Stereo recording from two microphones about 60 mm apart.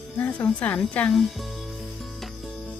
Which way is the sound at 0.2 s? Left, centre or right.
Left.